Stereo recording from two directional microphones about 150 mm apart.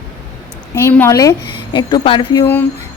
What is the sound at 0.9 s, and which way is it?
Speech, 15° left (ahead or behind).